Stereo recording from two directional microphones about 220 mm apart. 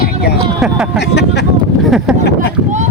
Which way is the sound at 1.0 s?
50° left (ahead or behind).